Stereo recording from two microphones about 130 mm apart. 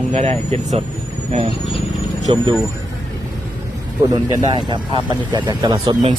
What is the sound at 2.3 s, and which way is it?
Speech, 40° right (ahead or behind).